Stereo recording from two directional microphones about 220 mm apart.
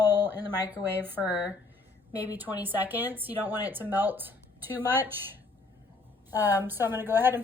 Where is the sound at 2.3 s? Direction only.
10° right (ahead or behind).